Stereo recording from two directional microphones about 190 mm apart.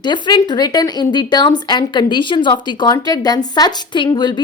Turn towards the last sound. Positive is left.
turn(degrees=20)  # may be behind; listen again after turning